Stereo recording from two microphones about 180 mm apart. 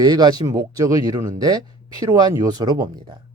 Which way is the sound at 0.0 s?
20° right (ahead or behind).